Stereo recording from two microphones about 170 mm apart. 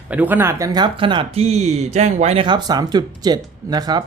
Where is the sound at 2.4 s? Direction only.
25° right (ahead or behind).